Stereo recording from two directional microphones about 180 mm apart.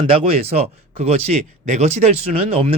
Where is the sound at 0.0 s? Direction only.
30° right (ahead or behind).